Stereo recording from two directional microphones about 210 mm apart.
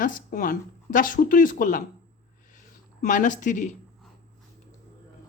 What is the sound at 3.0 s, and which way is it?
Speech, 35° left (ahead or behind).